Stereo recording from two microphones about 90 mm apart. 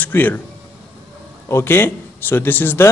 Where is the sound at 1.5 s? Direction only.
30° left (ahead or behind).